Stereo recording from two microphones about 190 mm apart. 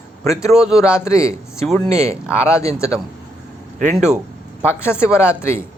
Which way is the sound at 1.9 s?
35° right (ahead or behind).